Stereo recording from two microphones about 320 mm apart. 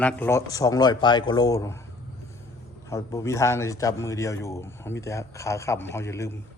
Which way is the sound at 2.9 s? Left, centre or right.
Centre.